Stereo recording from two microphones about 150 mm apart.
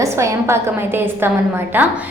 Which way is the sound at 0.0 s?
20° right (ahead or behind).